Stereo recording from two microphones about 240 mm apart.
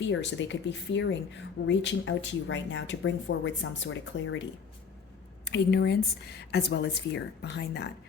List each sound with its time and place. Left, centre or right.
0.0 s speech: left
5.5 s speech: left